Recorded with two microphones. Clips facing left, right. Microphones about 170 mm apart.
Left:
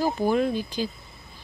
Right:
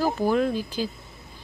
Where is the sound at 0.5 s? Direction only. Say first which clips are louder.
Even; 5° right (ahead or behind).